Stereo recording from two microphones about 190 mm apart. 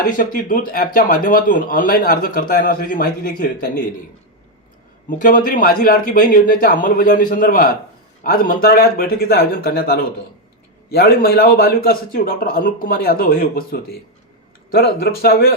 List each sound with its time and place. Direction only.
0.2 s a man's voice: 45° left (ahead or behind)
5.0 s a man's voice: 45° left (ahead or behind)